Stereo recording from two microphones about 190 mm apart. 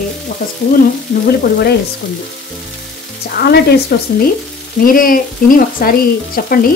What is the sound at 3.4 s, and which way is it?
Frying, 55° left (ahead or behind).